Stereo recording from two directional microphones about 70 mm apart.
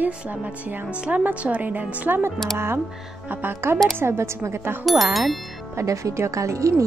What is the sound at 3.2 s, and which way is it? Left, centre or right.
A woman's voice, right.